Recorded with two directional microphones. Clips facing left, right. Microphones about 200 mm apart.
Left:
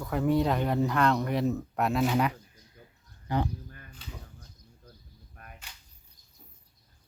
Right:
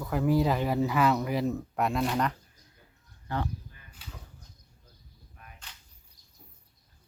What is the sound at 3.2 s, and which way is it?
Speech, 15° left (ahead or behind).